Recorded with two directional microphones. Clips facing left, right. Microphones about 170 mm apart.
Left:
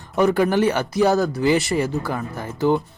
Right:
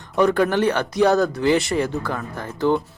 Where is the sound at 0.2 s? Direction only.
5° left (ahead or behind).